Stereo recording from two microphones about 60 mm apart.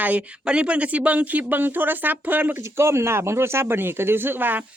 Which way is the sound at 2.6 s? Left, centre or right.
Right.